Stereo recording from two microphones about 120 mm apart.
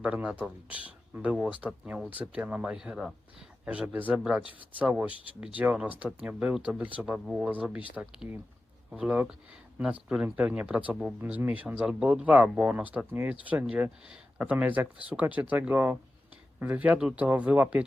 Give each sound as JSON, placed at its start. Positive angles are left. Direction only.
{"t": 0.0, "sound": "speech", "side_deg": -10}